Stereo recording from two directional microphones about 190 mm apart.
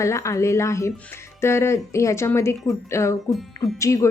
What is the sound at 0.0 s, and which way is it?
Speech, 15° left (ahead or behind).